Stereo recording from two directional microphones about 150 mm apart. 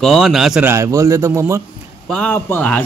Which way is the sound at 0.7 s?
20° right (ahead or behind).